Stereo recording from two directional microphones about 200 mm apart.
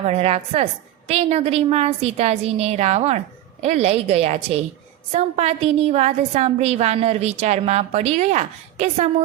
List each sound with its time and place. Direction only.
0.0 s a woman's voice: 30° right (ahead or behind)